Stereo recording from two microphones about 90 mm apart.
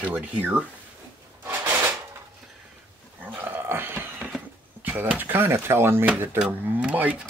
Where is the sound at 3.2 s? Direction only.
20° right (ahead or behind).